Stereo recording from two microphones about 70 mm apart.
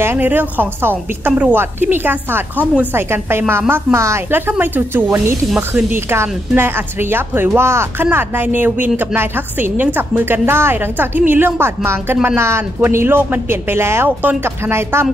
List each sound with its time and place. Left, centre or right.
0.0 s a woman's voice: right
14.0 s speech: right
14.7 s a woman's voice: right